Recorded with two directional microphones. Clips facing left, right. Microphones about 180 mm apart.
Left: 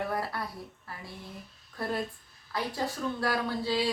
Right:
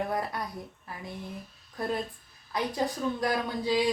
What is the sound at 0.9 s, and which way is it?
Speech, 15° right (ahead or behind).